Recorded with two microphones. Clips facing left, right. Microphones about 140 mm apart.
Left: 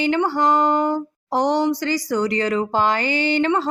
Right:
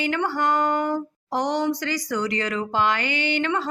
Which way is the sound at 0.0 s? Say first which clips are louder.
Left 5 dB; 30° left (ahead or behind).